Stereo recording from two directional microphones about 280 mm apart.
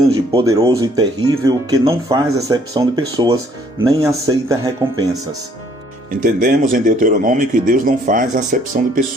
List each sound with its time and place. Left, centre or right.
0.1 s speech: centre
6.2 s speech: right